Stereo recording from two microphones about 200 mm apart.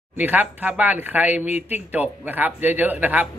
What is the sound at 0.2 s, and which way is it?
Speech, 10° right (ahead or behind).